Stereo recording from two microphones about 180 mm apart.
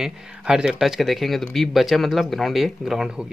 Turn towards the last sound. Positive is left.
turn(degrees=-5)  # may be behind; listen again after turning